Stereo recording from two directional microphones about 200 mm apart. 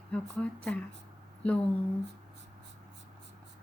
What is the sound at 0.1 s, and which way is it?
Speech, 5° left (ahead or behind).